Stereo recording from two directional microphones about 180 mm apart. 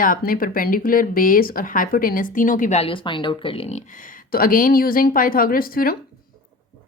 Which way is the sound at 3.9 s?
50° left (ahead or behind).